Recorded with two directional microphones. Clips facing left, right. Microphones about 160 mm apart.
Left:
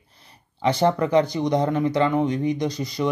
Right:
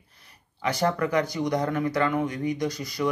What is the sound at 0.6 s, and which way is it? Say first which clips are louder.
Speech: left 5 dB; 25° left (ahead or behind).